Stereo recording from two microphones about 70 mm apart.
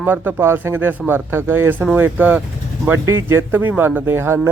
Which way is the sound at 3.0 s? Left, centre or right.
Right.